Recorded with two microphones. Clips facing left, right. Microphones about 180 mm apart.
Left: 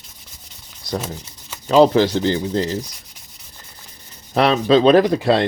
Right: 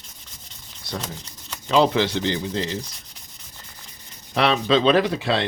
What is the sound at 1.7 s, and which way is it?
Speech, 40° left (ahead or behind).